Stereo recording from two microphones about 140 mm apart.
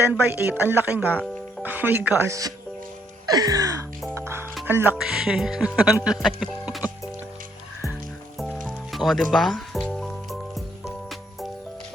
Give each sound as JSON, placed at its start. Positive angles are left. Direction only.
{"t": 0.1, "sound": "speech", "side_deg": -15}
{"t": 3.2, "sound": "music", "side_deg": -25}
{"t": 4.6, "sound": "speech", "side_deg": -15}
{"t": 8.6, "sound": "music", "side_deg": 0}